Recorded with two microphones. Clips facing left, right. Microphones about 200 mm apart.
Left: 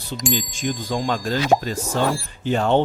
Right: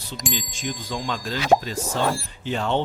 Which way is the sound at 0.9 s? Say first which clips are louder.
Left 6 dB; 50° left (ahead or behind).